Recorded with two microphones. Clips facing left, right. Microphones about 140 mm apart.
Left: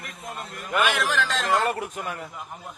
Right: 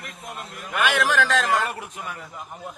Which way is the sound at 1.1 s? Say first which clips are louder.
Right 4 dB; 70° right (ahead or behind).